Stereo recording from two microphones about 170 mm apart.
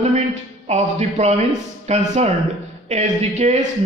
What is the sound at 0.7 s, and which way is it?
A man's voice, 40° right (ahead or behind).